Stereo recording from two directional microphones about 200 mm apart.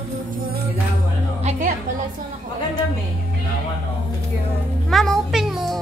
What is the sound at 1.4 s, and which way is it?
Music, 35° right (ahead or behind).